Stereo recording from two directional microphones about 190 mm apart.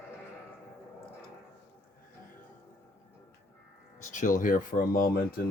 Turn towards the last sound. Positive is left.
turn(degrees=50)  # may be behind; listen again after turning